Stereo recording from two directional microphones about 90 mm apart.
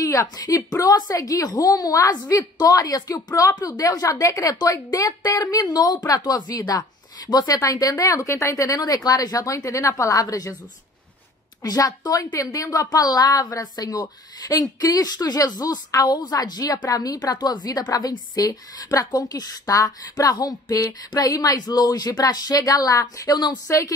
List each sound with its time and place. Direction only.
0.0 s a woman's voice: 40° left (ahead or behind)
11.6 s a woman's voice: 45° left (ahead or behind)
23.7 s a woman's voice: 35° left (ahead or behind)